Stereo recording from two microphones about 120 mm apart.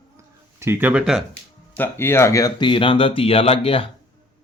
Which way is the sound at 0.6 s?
20° right (ahead or behind).